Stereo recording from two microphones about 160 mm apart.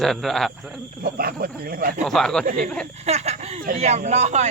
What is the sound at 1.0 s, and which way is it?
Speech, 65° right (ahead or behind).